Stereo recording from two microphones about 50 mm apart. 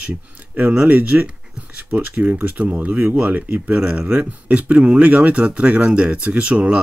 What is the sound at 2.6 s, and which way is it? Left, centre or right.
Speech, right.